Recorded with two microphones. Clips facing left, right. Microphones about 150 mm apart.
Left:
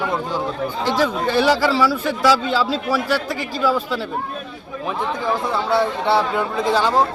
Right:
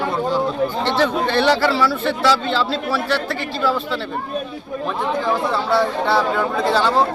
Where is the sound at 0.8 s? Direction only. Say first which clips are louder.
Left 1 dB; 10° left (ahead or behind).